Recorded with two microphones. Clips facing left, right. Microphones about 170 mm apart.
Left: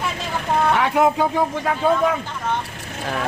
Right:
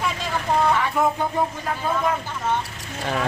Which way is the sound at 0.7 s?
80° left.